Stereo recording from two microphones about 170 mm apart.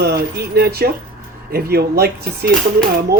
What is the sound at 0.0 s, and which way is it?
Speech, 75° right (ahead or behind).